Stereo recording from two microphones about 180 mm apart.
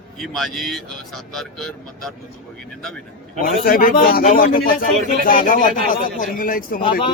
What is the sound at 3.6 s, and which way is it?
Speech, 55° left (ahead or behind).